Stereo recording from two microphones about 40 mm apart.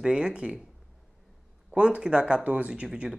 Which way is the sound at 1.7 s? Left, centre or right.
Right.